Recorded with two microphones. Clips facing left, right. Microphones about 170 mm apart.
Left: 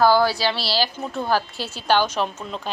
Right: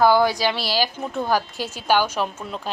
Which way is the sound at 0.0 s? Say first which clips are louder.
Even; 20° right (ahead or behind).